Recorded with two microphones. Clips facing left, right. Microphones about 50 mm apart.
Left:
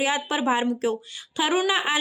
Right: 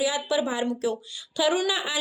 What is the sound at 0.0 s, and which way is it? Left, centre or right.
Speech, left.